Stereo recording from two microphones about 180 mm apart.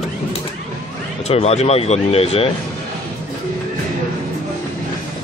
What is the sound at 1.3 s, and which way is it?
Speech, 35° left (ahead or behind).